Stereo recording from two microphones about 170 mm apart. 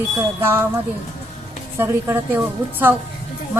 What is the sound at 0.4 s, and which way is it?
Speech, 15° right (ahead or behind).